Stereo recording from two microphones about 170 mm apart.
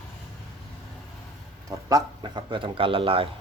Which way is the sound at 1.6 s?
20° right (ahead or behind).